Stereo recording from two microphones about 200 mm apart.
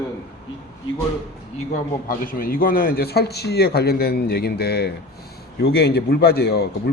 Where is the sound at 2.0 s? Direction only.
45° left (ahead or behind).